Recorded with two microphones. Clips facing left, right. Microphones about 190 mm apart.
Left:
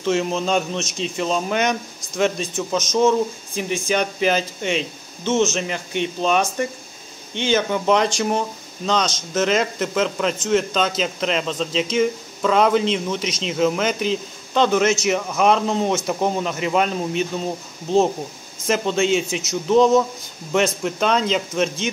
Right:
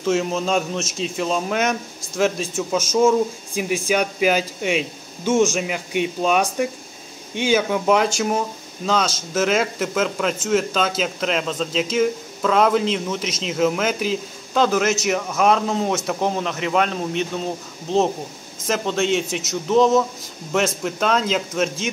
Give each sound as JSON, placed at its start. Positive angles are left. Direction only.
{"t": 0.0, "sound": "a man's voice", "side_deg": 0}